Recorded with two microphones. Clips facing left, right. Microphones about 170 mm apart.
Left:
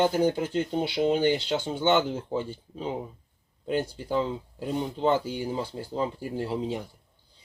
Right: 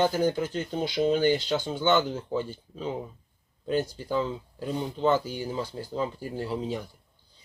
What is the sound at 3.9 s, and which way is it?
Speech, 20° left (ahead or behind).